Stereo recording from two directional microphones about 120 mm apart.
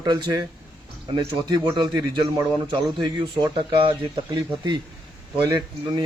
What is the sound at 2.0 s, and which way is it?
A man's voice, 45° right (ahead or behind).